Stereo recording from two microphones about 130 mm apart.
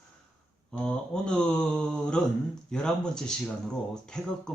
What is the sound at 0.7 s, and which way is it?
Mantra, 5° left (ahead or behind).